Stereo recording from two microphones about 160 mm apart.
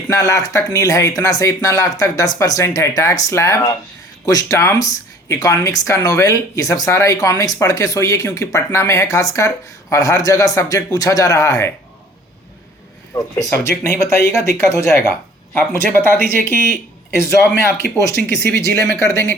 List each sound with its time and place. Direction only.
0.1 s speech: 20° left (ahead or behind)
13.1 s speech: 20° left (ahead or behind)
17.9 s speech: 20° left (ahead or behind)